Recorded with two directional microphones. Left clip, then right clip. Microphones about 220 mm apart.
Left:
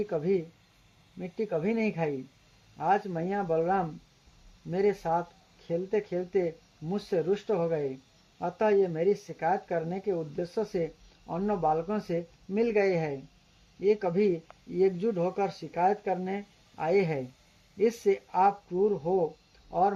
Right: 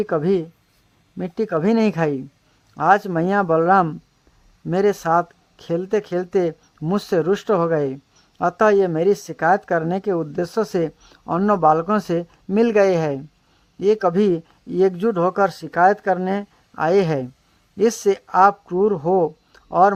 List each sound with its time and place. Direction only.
0.0 s speech: 35° right (ahead or behind)